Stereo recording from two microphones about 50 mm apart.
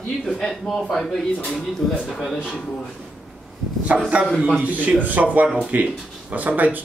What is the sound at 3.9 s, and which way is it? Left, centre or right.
Speech, centre.